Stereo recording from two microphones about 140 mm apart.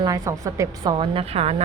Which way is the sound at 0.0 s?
25° right (ahead or behind).